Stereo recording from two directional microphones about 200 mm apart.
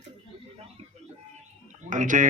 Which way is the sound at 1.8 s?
40° right (ahead or behind).